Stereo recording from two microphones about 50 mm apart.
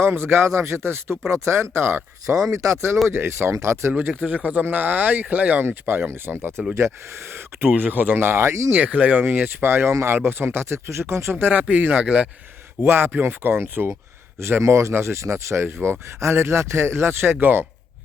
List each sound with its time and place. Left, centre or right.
0.0 s speech: right
2.5 s speech: right
3.1 s speech: right
3.5 s speech: right
4.2 s a man's voice: right
4.6 s a man's voice: right
5.6 s speech: right
6.7 s speech: right
7.7 s speech: right
8.7 s speech: right
11.5 s a man's voice: right
12.8 s speech: right
14.6 s speech: right
15.5 s speech: right